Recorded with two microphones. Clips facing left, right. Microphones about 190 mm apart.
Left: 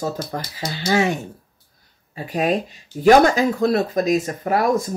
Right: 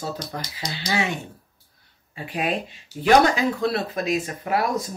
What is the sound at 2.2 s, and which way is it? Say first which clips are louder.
Speech: left 5 dB; 40° left (ahead or behind).